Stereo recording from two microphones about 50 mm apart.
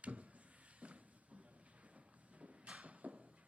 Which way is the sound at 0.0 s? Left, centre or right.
Right.